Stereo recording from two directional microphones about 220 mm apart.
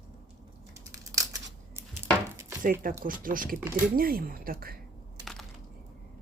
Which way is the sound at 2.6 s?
40° right (ahead or behind).